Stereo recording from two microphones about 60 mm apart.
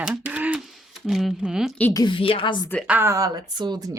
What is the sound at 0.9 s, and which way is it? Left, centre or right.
Speech, centre.